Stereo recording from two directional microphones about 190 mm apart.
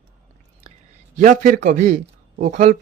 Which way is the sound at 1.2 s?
45° right (ahead or behind).